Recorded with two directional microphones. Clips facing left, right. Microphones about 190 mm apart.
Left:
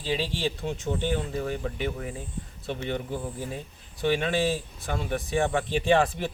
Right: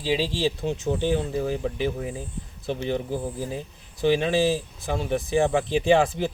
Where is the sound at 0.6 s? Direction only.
25° right (ahead or behind).